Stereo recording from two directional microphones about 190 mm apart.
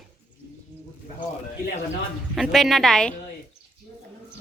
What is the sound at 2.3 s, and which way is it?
Speech, centre (ahead or behind).